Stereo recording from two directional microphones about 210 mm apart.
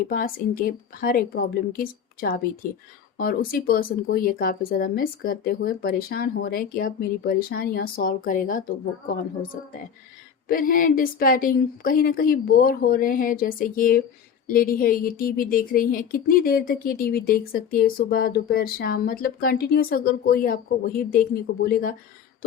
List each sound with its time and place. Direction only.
0.1 s a woman's voice: 40° left (ahead or behind)